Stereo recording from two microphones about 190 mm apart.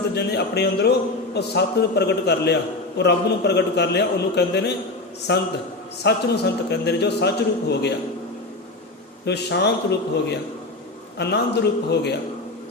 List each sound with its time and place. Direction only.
0.1 s speech: 60° left (ahead or behind)
9.2 s speech: 60° left (ahead or behind)
11.2 s speech: 60° left (ahead or behind)